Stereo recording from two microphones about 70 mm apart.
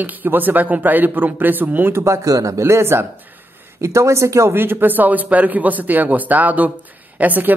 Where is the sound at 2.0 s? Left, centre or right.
Right.